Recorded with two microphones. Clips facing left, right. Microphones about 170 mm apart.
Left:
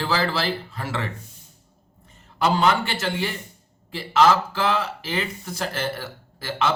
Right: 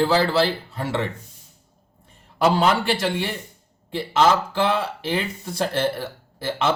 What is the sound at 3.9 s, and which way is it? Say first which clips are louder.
Speech: even; 25° right (ahead or behind).